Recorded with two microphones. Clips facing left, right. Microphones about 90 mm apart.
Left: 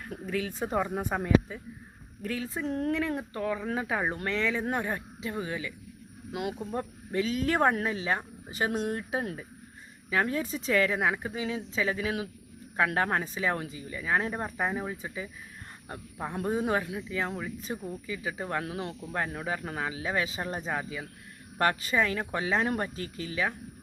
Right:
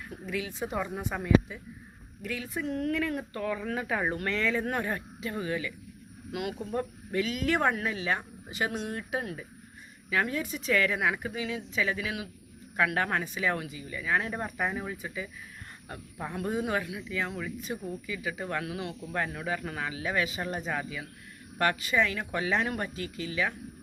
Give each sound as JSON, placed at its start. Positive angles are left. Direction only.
{"t": 0.1, "sound": "speech", "side_deg": 40}
{"t": 19.1, "sound": "speech", "side_deg": 20}
{"t": 21.6, "sound": "speech", "side_deg": 35}